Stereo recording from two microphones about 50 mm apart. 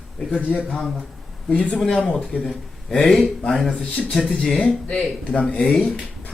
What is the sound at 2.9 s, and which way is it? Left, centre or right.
Speech, centre.